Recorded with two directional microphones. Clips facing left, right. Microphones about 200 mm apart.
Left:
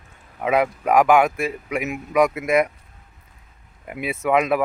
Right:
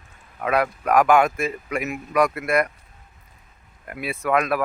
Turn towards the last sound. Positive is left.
turn(degrees=20)  # may be behind; listen again after turning